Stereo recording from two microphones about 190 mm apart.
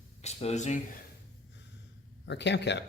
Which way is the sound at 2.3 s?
65° left (ahead or behind).